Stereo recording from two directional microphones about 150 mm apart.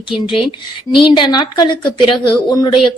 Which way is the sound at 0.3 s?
35° left (ahead or behind).